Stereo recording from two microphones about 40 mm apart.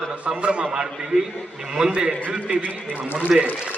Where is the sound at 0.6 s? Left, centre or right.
Centre.